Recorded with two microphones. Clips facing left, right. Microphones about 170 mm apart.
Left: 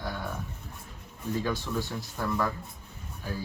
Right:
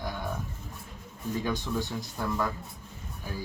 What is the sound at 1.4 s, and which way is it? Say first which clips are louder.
Speech: even; 15° right (ahead or behind).